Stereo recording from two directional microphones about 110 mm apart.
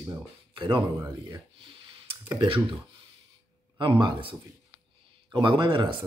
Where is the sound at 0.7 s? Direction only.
35° right (ahead or behind).